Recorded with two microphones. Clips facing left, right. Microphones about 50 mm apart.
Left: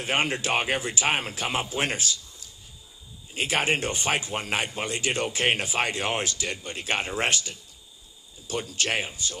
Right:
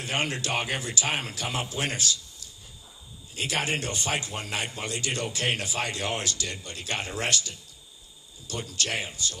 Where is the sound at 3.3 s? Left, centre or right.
Left.